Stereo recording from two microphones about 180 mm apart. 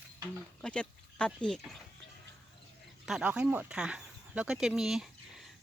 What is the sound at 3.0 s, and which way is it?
Speech, 5° right (ahead or behind).